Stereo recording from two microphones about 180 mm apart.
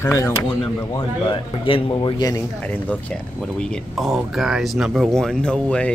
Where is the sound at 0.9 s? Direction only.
30° left (ahead or behind).